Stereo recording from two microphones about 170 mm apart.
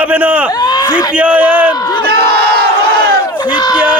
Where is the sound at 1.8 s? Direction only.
20° left (ahead or behind).